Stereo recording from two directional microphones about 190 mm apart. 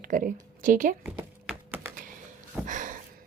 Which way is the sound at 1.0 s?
10° right (ahead or behind).